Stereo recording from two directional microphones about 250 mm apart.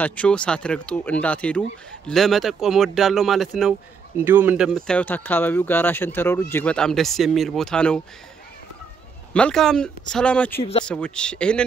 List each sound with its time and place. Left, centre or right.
0.0 s speech: centre
9.3 s speech: centre
10.6 s speech: left
10.9 s speech: centre